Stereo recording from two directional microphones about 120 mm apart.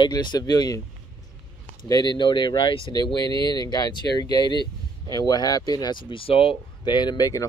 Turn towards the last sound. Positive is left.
turn(degrees=30)  # may be behind; listen again after turning